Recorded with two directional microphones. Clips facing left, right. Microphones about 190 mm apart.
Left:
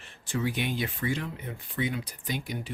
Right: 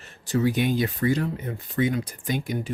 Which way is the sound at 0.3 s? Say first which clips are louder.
Right 7 dB; 40° right (ahead or behind).